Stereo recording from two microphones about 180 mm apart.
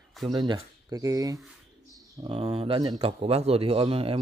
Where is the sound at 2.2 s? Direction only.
35° right (ahead or behind).